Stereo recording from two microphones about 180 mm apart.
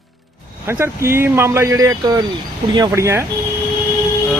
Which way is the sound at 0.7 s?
15° right (ahead or behind).